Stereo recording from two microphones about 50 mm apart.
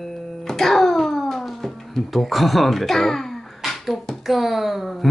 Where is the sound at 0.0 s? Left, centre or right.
Centre.